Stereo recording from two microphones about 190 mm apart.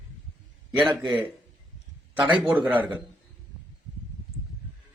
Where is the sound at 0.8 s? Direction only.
25° right (ahead or behind).